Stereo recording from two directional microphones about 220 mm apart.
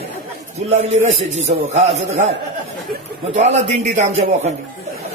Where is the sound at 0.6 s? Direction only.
30° right (ahead or behind).